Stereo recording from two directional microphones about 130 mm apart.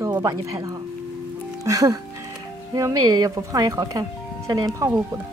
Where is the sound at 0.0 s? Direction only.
25° right (ahead or behind).